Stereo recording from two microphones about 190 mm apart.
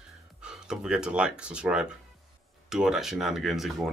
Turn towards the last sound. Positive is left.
turn(degrees=0)  # may be behind; listen again after turning